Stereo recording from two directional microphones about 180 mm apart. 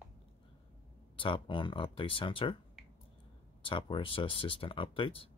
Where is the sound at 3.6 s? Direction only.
30° left (ahead or behind).